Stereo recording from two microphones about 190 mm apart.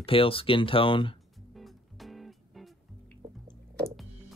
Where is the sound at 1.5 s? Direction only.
Centre (ahead or behind).